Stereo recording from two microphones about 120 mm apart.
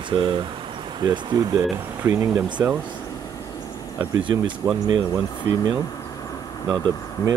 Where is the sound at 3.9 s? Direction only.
30° right (ahead or behind).